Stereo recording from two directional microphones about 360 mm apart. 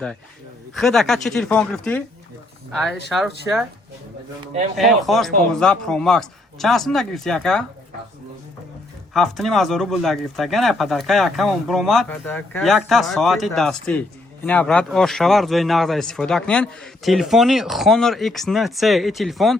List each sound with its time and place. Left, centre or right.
0.8 s speech: centre
4.8 s speech: centre
9.1 s speech: centre